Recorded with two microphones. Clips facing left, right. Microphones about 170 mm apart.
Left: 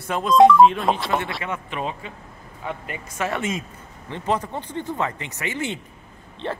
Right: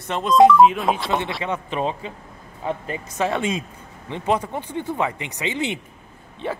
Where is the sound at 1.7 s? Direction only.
30° right (ahead or behind).